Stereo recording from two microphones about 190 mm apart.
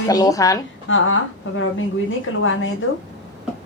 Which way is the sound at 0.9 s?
90° left.